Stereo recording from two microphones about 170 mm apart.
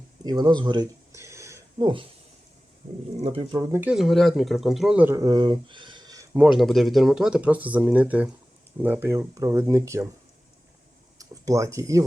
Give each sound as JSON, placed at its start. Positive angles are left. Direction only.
{"t": 0.3, "sound": "a sound", "side_deg": -25}
{"t": 3.2, "sound": "speech", "side_deg": -35}
{"t": 3.6, "sound": "speech", "side_deg": -15}
{"t": 6.3, "sound": "speech", "side_deg": -5}
{"t": 11.2, "sound": "speech", "side_deg": -20}